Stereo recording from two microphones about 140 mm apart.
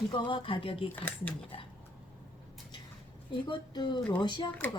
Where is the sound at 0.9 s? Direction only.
10° left (ahead or behind).